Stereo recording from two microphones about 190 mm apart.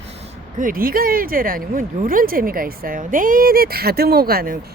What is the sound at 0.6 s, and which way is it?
Speech, 50° right (ahead or behind).